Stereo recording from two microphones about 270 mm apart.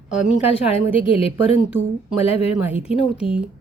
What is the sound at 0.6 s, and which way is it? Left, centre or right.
A woman's voice, centre.